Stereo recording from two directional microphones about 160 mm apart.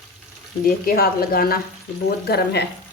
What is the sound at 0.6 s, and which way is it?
Speech, 70° left (ahead or behind).